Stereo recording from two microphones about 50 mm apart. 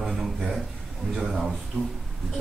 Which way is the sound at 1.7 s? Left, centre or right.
Right.